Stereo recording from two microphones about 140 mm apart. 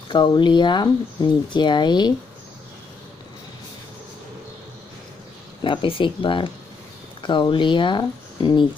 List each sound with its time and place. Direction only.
0.1 s speech: 30° left (ahead or behind)
5.6 s speech: 40° left (ahead or behind)